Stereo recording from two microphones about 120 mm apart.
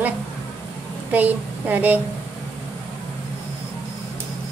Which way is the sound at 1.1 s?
15° right (ahead or behind).